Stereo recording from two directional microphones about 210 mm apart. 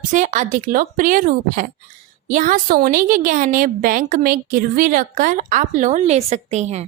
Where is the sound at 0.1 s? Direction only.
35° right (ahead or behind).